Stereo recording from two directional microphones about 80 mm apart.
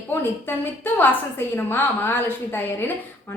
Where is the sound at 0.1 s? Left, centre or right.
Left.